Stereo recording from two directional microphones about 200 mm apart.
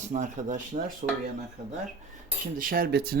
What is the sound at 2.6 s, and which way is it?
Speech, 45° right (ahead or behind).